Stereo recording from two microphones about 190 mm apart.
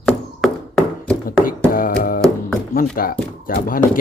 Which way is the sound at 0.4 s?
Centre (ahead or behind).